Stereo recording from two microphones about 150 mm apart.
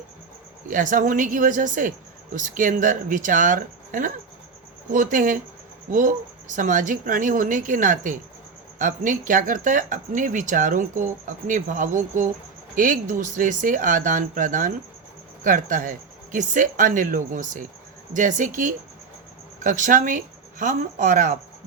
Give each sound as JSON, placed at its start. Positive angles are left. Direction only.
{"t": 0.7, "sound": "speech", "side_deg": -60}